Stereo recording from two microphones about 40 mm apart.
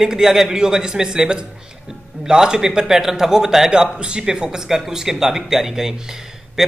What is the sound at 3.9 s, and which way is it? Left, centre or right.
Speech, right.